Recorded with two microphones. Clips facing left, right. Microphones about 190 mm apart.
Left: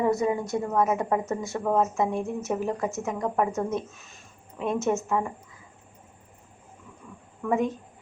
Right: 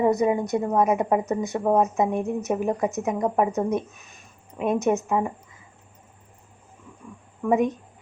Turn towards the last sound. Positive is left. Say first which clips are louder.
# right 4 dB
turn(degrees=-15)  # may be behind; listen again after turning